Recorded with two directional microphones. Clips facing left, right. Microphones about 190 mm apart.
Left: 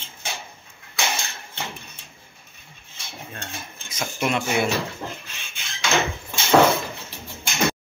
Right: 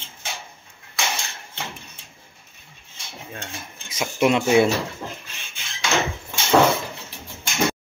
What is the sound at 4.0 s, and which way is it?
Speech, 15° right (ahead or behind).